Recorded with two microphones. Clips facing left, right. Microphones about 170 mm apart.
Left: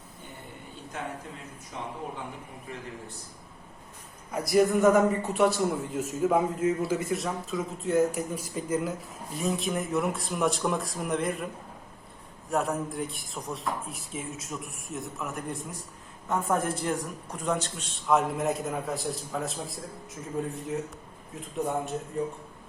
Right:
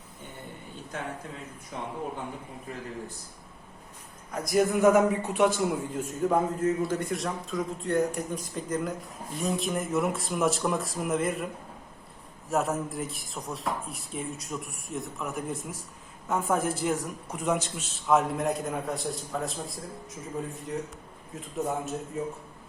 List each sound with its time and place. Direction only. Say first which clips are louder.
4.3 s a man's voice: left 2 dB; centre (ahead or behind)
12.5 s a man's voice: right 1 dB; centre (ahead or behind)